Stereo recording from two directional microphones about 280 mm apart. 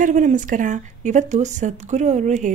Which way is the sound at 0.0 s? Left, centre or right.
Right.